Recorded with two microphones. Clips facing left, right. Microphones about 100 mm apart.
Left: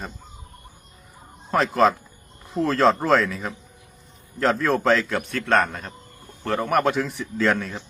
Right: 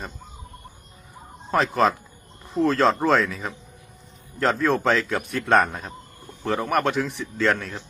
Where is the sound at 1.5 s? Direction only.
Centre (ahead or behind).